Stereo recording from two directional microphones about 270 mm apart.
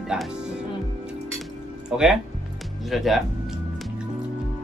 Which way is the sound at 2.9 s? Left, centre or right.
Centre.